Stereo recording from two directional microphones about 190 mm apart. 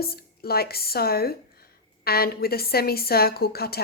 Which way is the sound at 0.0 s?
55° left (ahead or behind).